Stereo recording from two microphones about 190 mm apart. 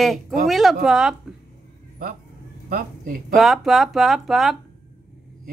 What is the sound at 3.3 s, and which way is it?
Speech, centre (ahead or behind).